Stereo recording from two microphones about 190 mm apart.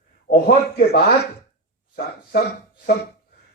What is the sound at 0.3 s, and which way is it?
Speech, 60° left (ahead or behind).